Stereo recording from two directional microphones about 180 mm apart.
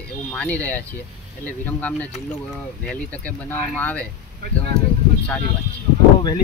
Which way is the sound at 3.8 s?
10° left (ahead or behind).